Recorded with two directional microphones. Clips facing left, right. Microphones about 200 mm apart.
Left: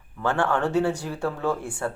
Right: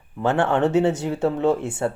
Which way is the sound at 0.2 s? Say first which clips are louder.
Right 4 dB; 20° right (ahead or behind).